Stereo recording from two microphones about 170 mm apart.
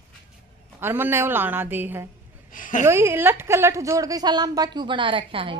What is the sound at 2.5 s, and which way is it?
Speech, 50° left (ahead or behind).